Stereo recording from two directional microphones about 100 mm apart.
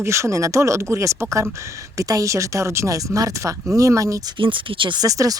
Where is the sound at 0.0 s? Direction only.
30° right (ahead or behind).